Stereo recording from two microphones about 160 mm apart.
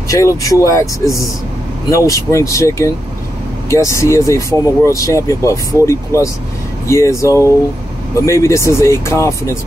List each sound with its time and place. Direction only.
0.1 s speech: 20° left (ahead or behind)